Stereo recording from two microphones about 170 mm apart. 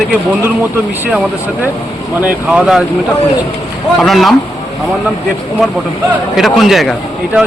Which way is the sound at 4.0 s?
Centre (ahead or behind).